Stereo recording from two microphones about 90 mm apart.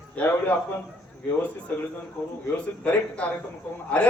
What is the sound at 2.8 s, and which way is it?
A man's voice, 15° left (ahead or behind).